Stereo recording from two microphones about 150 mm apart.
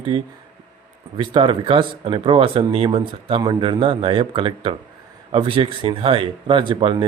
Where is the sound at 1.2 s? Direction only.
35° right (ahead or behind).